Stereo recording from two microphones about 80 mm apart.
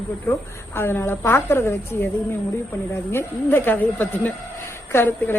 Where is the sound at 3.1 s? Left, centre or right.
Left.